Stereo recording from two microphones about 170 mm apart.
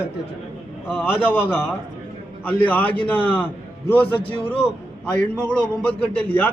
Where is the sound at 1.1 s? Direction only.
10° left (ahead or behind).